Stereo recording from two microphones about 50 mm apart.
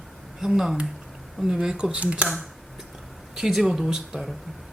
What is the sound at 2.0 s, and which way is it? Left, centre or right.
Speech, right.